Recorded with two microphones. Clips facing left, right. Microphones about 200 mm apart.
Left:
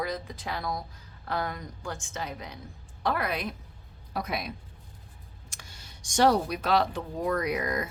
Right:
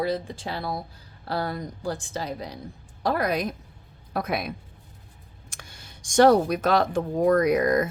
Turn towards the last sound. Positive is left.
turn(degrees=-45)  # may be behind; listen again after turning